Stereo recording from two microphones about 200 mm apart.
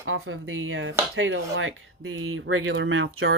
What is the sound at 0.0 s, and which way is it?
Speech, 80° right.